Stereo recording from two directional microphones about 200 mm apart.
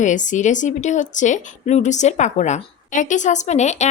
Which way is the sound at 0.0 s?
40° left (ahead or behind).